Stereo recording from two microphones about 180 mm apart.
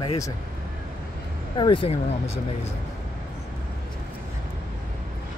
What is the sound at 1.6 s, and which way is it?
Speech, 30° left (ahead or behind).